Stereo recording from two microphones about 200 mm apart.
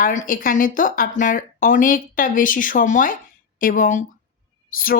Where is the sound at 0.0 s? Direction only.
40° left (ahead or behind).